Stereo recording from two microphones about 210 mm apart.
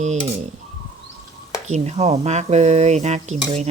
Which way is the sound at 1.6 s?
30° right (ahead or behind).